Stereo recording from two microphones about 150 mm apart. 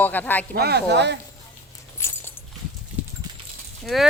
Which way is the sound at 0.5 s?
90° right.